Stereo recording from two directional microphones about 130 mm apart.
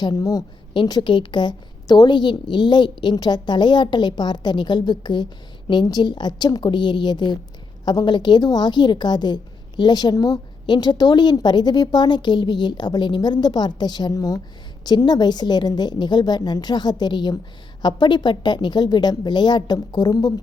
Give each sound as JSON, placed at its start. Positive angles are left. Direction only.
{"t": 0.0, "sound": "a woman's voice", "side_deg": 30}